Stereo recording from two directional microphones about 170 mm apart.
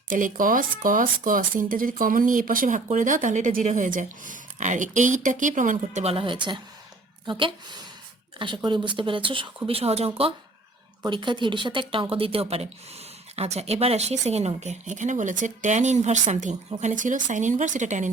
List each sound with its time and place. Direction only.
0.1 s speech: 50° right (ahead or behind)